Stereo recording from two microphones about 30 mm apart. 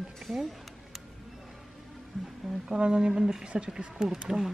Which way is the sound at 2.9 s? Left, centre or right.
Right.